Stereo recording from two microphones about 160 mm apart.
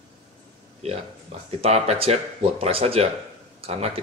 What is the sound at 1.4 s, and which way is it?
Speech, 40° right (ahead or behind).